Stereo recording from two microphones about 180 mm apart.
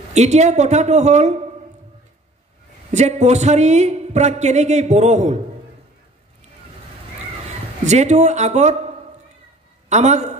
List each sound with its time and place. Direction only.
0.1 s a woman's voice: 40° right (ahead or behind)
2.9 s a woman's voice: 40° right (ahead or behind)
7.8 s a woman's voice: 40° right (ahead or behind)